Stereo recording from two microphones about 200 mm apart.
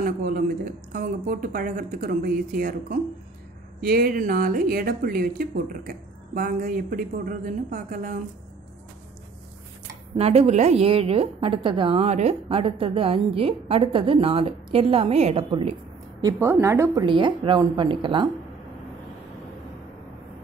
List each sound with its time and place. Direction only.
0.0 s speech: 45° right (ahead or behind)
10.1 s a woman's voice: 30° right (ahead or behind)
16.2 s a woman's voice: 15° right (ahead or behind)